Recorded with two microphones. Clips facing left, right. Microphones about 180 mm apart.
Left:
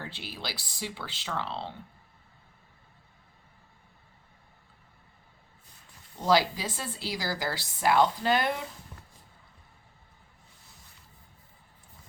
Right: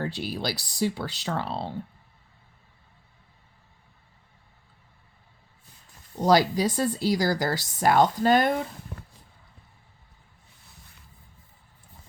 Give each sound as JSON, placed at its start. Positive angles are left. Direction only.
{"t": 0.0, "sound": "speech", "side_deg": -40}
{"t": 6.2, "sound": "speech", "side_deg": -40}
{"t": 8.9, "sound": "a sound", "side_deg": -70}